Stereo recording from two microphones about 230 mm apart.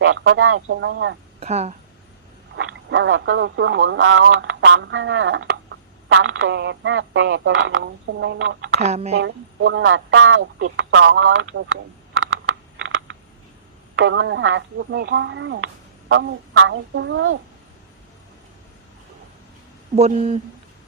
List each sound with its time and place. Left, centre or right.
0.0 s speech: right
1.4 s speech: right
2.6 s speech: right
8.8 s speech: right
9.1 s speech: right
12.2 s a sound: right
13.9 s speech: right
20.0 s speech: right